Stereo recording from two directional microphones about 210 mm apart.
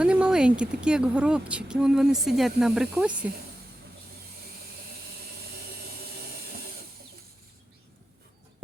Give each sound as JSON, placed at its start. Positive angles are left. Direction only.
{"t": 0.0, "sound": "speech", "side_deg": -5}